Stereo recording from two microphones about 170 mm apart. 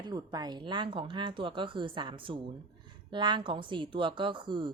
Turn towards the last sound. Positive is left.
turn(degrees=-25)  # may be behind; listen again after turning